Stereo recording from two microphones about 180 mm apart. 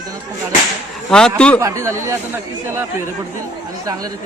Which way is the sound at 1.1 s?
5° left (ahead or behind).